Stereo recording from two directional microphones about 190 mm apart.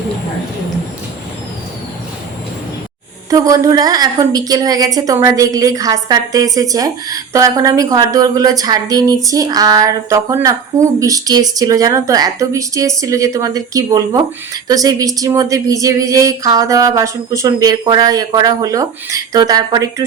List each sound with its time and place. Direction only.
3.2 s a woman's voice: 20° right (ahead or behind)